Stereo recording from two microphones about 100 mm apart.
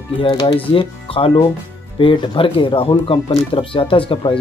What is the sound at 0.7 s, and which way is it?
Speech, 65° left (ahead or behind).